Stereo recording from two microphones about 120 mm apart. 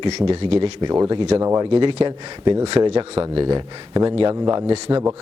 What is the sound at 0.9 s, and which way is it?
Speech, 25° right (ahead or behind).